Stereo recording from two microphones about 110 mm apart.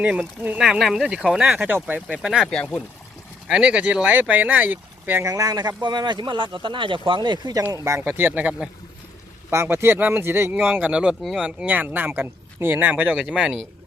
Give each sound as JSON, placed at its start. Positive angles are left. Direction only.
{"t": 0.0, "sound": "speech", "side_deg": -10}
{"t": 2.5, "sound": "speech", "side_deg": 10}
{"t": 3.4, "sound": "speech", "side_deg": -10}
{"t": 5.2, "sound": "speech", "side_deg": -30}
{"t": 7.7, "sound": "speech", "side_deg": -25}
{"t": 9.5, "sound": "speech", "side_deg": -25}